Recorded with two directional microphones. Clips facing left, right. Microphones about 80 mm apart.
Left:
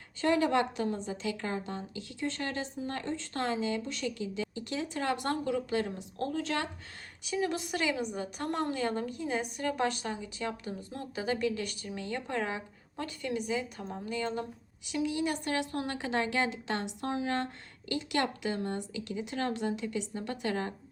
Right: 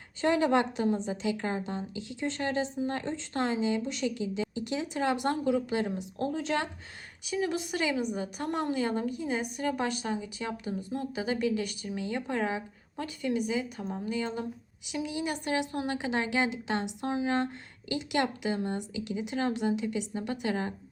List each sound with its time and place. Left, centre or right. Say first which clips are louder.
0.2 s a woman's voice: right 2 dB; right
7.3 s a woman's voice: right 1 dB; centre